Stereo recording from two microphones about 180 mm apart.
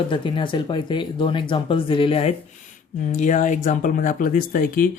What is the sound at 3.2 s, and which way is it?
Speech, 45° left (ahead or behind).